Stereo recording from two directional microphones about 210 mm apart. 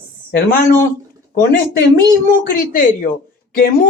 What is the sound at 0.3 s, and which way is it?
Speech, 45° left (ahead or behind).